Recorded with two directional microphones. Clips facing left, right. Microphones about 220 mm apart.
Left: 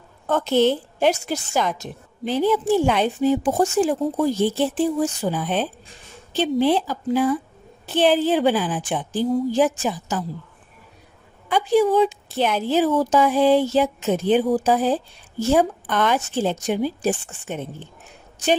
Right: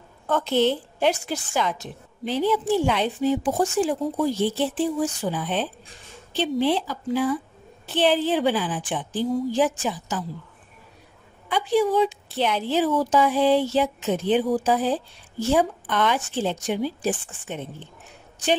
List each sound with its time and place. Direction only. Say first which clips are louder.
0.3 s a woman's voice: left 3 dB; 45° left (ahead or behind)
11.4 s a woman's voice: left 3 dB; 45° left (ahead or behind)